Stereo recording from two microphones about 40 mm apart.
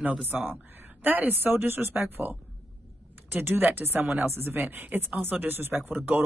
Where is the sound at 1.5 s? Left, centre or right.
Right.